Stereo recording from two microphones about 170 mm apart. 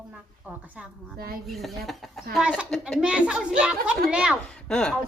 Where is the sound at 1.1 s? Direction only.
65° right (ahead or behind).